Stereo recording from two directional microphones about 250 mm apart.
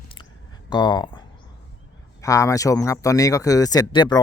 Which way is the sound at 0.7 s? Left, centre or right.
Centre.